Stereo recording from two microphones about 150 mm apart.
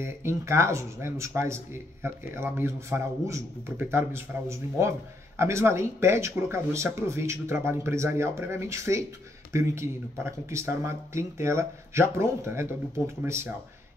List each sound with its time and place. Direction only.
0.0 s speech: 15° right (ahead or behind)